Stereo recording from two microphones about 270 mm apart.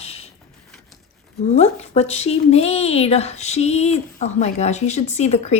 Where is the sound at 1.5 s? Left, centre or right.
Left.